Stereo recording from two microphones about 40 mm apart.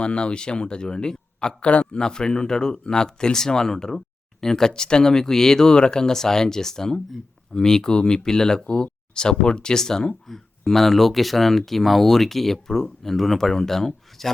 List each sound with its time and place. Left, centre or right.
0.0 s speech: left
1.7 s speech: left
2.0 s speech: centre